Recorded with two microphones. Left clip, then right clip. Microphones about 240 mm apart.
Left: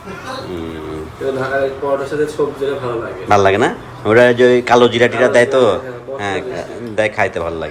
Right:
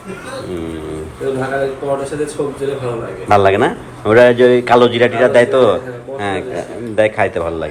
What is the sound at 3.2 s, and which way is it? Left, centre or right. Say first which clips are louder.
A man's voice: right 1 dB; centre.